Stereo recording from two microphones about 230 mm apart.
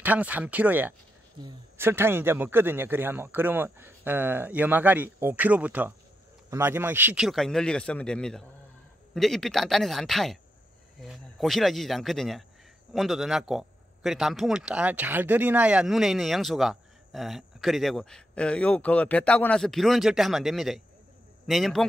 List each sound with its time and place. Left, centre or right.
0.0 s a man's voice: centre